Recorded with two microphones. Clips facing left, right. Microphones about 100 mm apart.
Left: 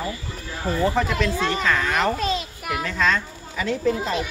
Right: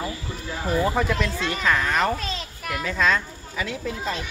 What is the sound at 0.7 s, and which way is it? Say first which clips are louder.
Speech: left 1 dB; 10° right (ahead or behind).